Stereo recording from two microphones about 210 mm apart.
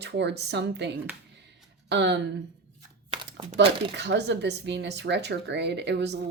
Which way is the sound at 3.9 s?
55° right (ahead or behind).